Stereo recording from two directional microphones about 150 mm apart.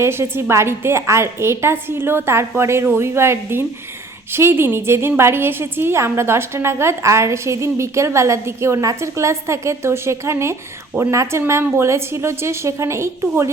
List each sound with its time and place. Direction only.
0.0 s a woman's voice: 15° right (ahead or behind)